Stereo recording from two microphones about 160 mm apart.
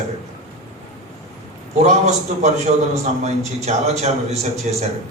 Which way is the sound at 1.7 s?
45° right (ahead or behind).